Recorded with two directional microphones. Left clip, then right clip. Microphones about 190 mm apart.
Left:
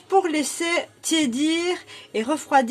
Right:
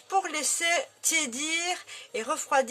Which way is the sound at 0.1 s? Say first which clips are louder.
Left 7 dB; 15° right (ahead or behind).